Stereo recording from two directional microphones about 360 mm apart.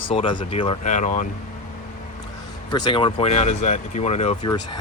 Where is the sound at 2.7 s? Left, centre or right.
Centre.